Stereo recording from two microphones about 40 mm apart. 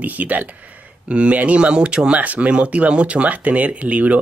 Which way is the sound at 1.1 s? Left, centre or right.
Right.